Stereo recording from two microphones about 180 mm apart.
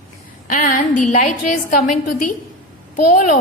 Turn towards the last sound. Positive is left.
turn(degrees=45)  # may be behind; listen again after turning